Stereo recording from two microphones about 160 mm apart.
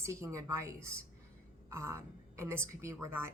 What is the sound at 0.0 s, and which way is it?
Speech, 20° right (ahead or behind).